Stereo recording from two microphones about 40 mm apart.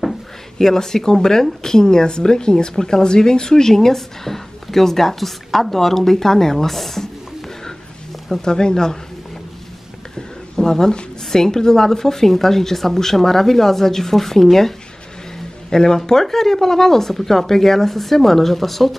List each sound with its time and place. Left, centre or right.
0.6 s speech: centre
10.5 s a sound: centre
11.2 s speech: centre
15.7 s speech: centre